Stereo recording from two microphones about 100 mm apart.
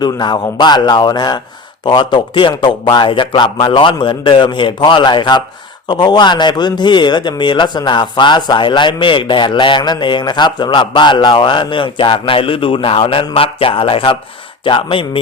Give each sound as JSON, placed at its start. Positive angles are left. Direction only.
{"t": 0.0, "sound": "a man's voice", "side_deg": 45}